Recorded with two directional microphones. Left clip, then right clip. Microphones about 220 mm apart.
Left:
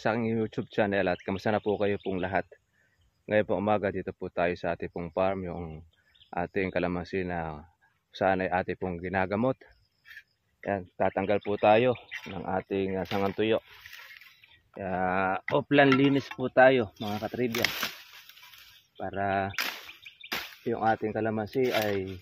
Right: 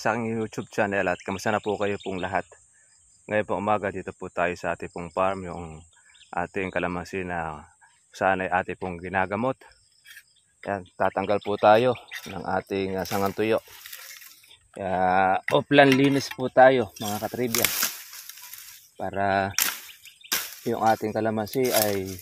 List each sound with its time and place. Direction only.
0.0 s speech: 5° right (ahead or behind)
11.0 s speech: 10° right (ahead or behind)
11.4 s speech: 25° right (ahead or behind)
14.7 s speech: 25° right (ahead or behind)
19.0 s speech: 50° right (ahead or behind)
20.6 s speech: 40° right (ahead or behind)